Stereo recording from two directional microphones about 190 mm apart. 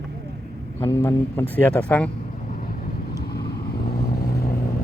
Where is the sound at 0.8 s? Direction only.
15° left (ahead or behind).